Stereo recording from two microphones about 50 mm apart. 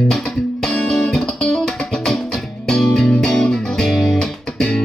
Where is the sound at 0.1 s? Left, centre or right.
Centre.